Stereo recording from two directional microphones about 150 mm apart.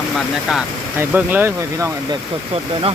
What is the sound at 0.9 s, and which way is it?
Speech, 10° right (ahead or behind).